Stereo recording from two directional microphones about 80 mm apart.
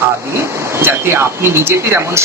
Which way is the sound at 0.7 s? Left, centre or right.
Right.